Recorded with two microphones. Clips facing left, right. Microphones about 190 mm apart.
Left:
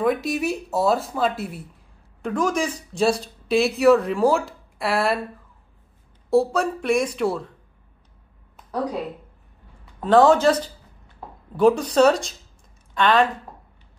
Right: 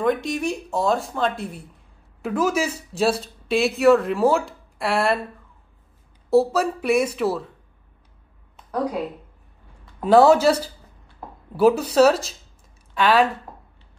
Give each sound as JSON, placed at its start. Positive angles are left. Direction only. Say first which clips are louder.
{"t": 0.0, "sound": "speech", "louder": "even", "side_deg": 5}
{"t": 6.3, "sound": "speech", "louder": "right 1 dB", "side_deg": -5}
{"t": 9.9, "sound": "speech", "louder": "right 1 dB", "side_deg": -10}